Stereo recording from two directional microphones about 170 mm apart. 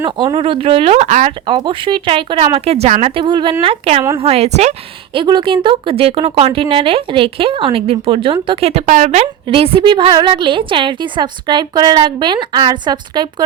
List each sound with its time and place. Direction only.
0.0 s speech: 25° right (ahead or behind); by 1.3 s 45° right (ahead or behind)
1.5 s speech: 30° right (ahead or behind)
5.1 s speech: 30° right (ahead or behind)